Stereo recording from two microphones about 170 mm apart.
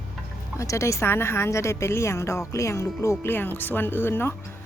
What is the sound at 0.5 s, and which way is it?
A woman's voice, 20° left (ahead or behind).